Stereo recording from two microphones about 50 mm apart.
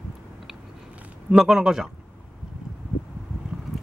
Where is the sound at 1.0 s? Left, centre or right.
Right.